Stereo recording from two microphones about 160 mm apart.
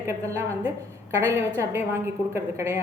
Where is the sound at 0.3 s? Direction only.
15° right (ahead or behind).